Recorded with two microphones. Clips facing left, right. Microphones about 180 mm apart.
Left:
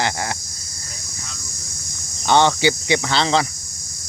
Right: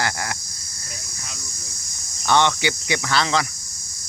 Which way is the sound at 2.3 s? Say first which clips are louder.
Left 4 dB; 30° left (ahead or behind).